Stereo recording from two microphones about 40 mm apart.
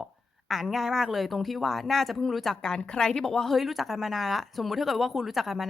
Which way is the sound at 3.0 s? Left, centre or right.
Centre.